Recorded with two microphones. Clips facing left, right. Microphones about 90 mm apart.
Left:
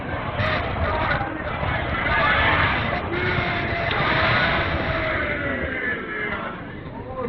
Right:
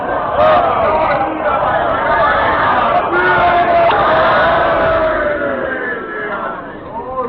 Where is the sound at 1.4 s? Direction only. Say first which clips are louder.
Right 14 dB; 60° right (ahead or behind); by 2.8 s 40° right (ahead or behind).